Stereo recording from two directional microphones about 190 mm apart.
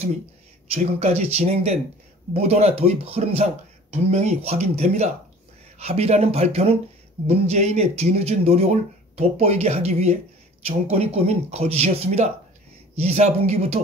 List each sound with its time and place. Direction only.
0.7 s speech: 35° right (ahead or behind)